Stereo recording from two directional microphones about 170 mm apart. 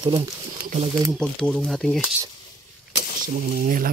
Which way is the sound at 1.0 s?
Centre (ahead or behind).